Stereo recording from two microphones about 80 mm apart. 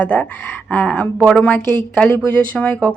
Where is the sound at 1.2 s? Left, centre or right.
Centre.